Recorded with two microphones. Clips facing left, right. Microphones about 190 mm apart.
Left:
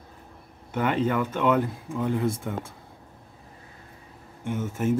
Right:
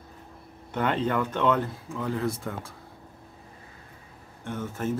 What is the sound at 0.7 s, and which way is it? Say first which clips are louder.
Speech: left 2 dB; 10° left (ahead or behind).